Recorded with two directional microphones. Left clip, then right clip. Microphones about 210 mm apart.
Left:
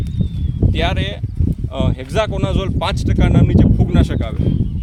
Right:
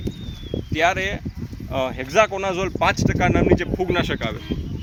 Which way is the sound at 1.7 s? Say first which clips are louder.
Right 2 dB; 60° left (ahead or behind).